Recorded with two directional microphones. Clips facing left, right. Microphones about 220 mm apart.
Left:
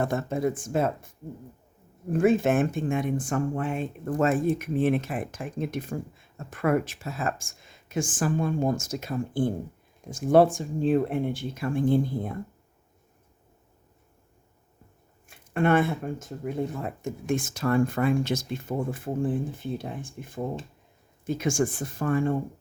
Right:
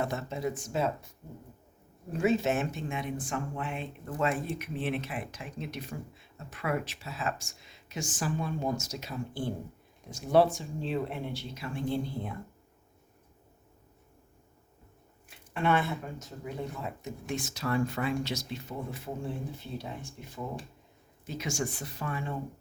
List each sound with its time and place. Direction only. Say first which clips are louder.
0.0 s speech: left 6 dB; 50° left (ahead or behind)
2.1 s speech: left 6 dB; 50° left (ahead or behind)
15.3 s speech: left 6 dB; 50° left (ahead or behind)